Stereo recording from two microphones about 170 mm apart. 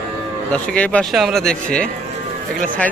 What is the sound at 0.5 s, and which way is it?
A man's voice, 5° left (ahead or behind).